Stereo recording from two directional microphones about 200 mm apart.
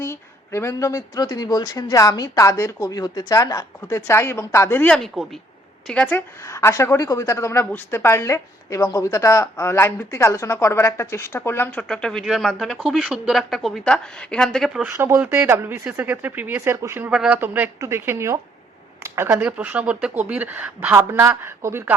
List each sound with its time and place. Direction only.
0.0 s a woman's voice: 15° left (ahead or behind); by 14.8 s centre (ahead or behind)
14.9 s speech: 15° right (ahead or behind)